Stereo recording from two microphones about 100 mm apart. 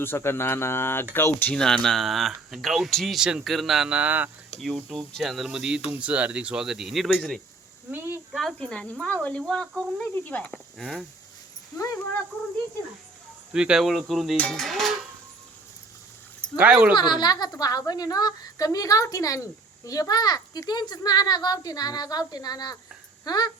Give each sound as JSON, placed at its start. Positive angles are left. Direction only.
{"t": 0.0, "sound": "speech", "side_deg": 25}
{"t": 1.5, "sound": "speech", "side_deg": 5}
{"t": 4.6, "sound": "speech", "side_deg": 0}
{"t": 7.9, "sound": "a sound", "side_deg": -20}
{"t": 8.3, "sound": "speech", "side_deg": 0}
{"t": 13.5, "sound": "speech", "side_deg": -10}
{"t": 16.6, "sound": "speech", "side_deg": -15}
{"t": 16.9, "sound": "a woman's voice", "side_deg": 45}